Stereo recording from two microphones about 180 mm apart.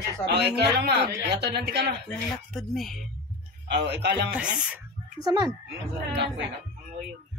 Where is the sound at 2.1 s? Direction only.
Centre (ahead or behind).